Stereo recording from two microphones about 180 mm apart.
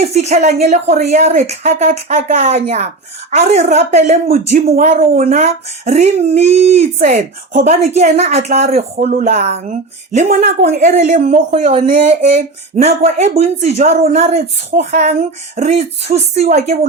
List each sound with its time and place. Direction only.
0.1 s speech: 40° right (ahead or behind)
10.8 s speech: 40° right (ahead or behind)